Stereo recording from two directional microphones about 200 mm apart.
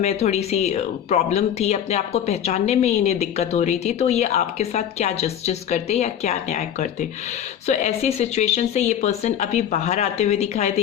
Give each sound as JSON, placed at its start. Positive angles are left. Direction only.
{"t": 0.0, "sound": "speech", "side_deg": 30}